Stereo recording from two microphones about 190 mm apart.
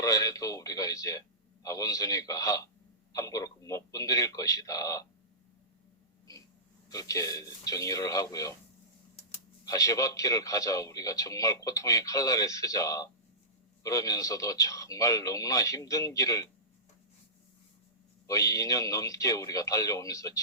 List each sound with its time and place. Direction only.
0.0 s a man's voice: 20° left (ahead or behind)
6.8 s a man's voice: 20° left (ahead or behind)
9.6 s a man's voice: 15° left (ahead or behind)
18.3 s a man's voice: 15° left (ahead or behind)